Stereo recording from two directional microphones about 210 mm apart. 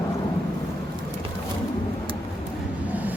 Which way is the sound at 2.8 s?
10° right (ahead or behind).